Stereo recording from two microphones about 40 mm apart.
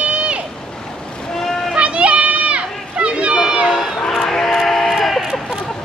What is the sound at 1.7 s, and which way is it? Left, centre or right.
Children playing, right.